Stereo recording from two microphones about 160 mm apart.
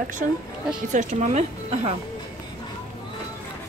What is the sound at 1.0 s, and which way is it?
Speech, 55° right (ahead or behind).